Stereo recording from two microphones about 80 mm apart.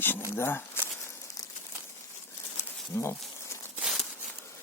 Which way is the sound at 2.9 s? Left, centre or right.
Left.